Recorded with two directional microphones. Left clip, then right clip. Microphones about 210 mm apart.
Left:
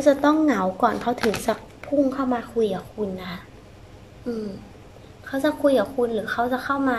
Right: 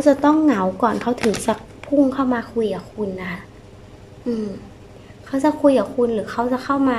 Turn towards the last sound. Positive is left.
turn(degrees=-10)  # may be behind; listen again after turning